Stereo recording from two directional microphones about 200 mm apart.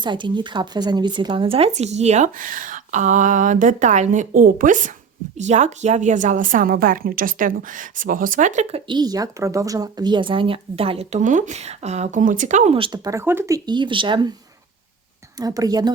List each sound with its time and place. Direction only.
0.0 s speech: 25° right (ahead or behind)
8.9 s a woman's voice: 20° right (ahead or behind)
15.4 s a woman's voice: 20° right (ahead or behind)